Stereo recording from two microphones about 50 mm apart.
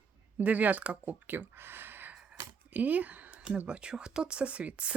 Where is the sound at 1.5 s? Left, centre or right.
Right.